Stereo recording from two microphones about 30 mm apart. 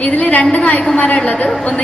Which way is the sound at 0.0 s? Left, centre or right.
Left.